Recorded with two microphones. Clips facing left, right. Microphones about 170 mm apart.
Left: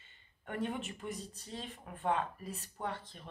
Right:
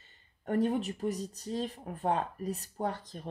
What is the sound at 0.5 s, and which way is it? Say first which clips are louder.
Speech: right 9 dB; 40° right (ahead or behind).